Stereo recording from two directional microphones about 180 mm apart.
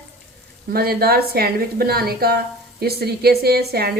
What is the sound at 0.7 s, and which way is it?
A woman's voice, 60° right (ahead or behind).